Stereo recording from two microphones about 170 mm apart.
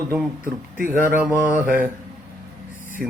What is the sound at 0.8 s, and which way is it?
Speech, 10° right (ahead or behind).